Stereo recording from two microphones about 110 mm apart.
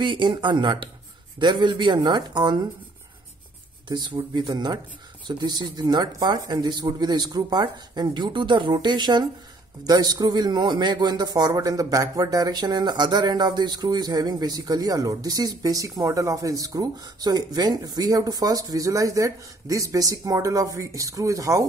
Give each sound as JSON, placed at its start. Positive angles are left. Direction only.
{"t": 0.0, "sound": "speech", "side_deg": -45}
{"t": 3.9, "sound": "speech", "side_deg": -45}